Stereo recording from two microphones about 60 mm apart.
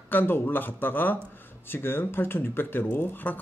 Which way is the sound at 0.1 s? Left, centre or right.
Left.